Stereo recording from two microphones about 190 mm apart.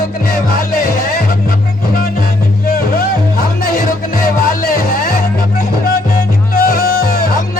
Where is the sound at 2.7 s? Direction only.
50° left (ahead or behind).